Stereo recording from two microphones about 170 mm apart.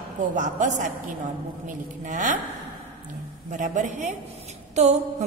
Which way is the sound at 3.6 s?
45° right (ahead or behind).